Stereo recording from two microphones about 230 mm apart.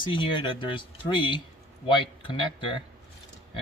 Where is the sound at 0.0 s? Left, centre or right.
Left.